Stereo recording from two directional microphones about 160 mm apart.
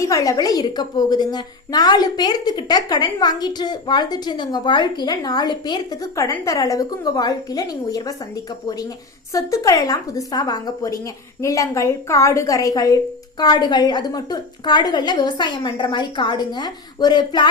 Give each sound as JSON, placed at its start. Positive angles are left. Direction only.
{"t": 0.0, "sound": "a woman's voice", "side_deg": 20}
{"t": 9.3, "sound": "a woman's voice", "side_deg": 20}